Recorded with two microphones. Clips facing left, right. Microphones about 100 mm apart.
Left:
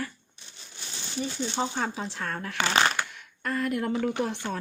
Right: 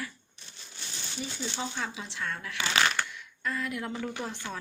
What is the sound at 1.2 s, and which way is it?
Speech, 40° left (ahead or behind).